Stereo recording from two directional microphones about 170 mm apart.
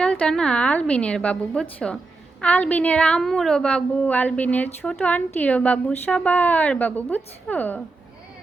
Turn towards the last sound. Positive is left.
turn(degrees=10)  # may be behind; listen again after turning